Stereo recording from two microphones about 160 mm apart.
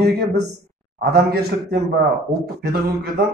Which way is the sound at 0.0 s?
90° right.